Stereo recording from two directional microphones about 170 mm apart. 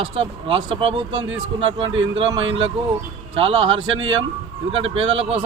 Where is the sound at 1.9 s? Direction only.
90° right.